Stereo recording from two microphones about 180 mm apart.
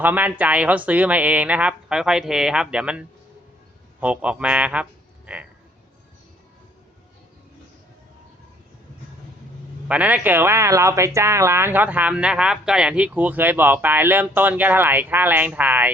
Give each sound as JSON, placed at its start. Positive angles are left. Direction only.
{"t": 0.0, "sound": "speech", "side_deg": -10}
{"t": 9.9, "sound": "speech", "side_deg": -10}